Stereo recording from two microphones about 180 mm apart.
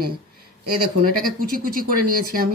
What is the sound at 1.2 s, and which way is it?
A woman's voice, 50° right (ahead or behind).